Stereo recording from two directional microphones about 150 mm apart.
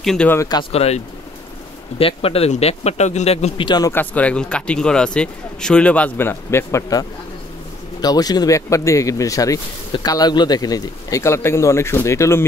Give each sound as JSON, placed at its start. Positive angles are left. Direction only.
{"t": 0.0, "sound": "speech", "side_deg": 0}
{"t": 0.3, "sound": "speech", "side_deg": 25}
{"t": 0.7, "sound": "speech", "side_deg": 45}
{"t": 3.6, "sound": "speech", "side_deg": 25}
{"t": 3.9, "sound": "speech", "side_deg": 10}